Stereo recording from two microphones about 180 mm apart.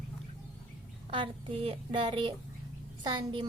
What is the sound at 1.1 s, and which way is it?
A woman's voice, 30° right (ahead or behind).